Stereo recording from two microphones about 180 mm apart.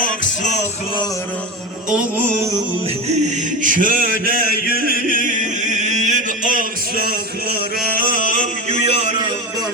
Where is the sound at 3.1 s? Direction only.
40° right (ahead or behind).